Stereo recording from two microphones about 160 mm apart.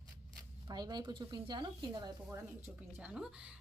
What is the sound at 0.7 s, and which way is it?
Speech, 25° right (ahead or behind).